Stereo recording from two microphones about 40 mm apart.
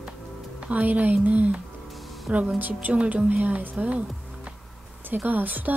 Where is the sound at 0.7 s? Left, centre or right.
Right.